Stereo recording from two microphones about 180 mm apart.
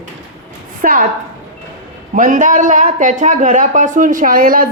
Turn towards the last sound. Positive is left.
turn(degrees=-50)  # may be behind; listen again after turning